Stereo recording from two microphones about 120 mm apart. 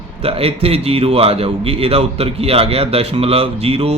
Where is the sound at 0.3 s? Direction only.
55° right (ahead or behind).